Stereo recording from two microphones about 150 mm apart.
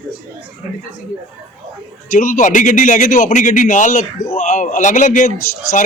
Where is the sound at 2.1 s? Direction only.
60° left (ahead or behind).